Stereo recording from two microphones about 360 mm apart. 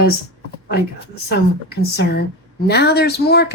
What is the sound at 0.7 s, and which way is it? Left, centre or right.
A woman's voice, left.